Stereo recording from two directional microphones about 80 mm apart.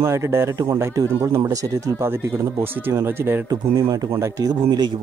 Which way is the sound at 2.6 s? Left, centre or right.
Right.